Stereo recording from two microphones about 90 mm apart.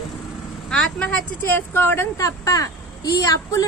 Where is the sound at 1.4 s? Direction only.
25° left (ahead or behind).